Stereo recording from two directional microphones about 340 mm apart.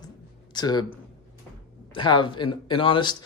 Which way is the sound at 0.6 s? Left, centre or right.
Centre.